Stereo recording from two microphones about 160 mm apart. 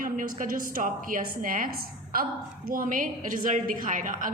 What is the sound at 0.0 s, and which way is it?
A woman's voice, 60° right (ahead or behind).